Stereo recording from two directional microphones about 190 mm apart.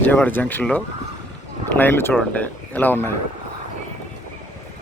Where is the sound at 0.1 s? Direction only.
10° left (ahead or behind).